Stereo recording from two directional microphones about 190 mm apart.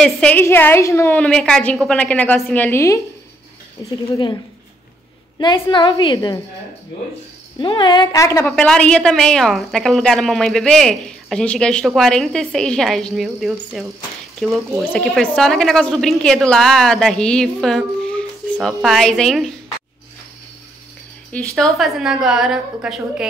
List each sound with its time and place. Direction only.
0.0 s a woman's voice: 5° left (ahead or behind)
4.1 s a woman's voice: 20° left (ahead or behind)
5.4 s a woman's voice: 25° left (ahead or behind)
7.5 s a woman's voice: 25° left (ahead or behind)
8.5 s a woman's voice: 5° left (ahead or behind)
21.3 s a woman's voice: 5° left (ahead or behind)